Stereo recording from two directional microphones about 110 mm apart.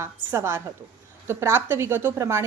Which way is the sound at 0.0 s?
25° right (ahead or behind).